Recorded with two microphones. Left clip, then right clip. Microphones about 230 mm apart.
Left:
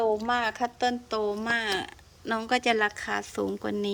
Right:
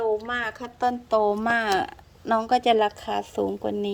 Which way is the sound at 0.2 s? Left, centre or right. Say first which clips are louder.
Left 1 dB; centre.